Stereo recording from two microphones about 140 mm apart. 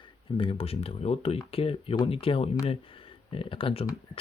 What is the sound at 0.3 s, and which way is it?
Speech, 40° left (ahead or behind).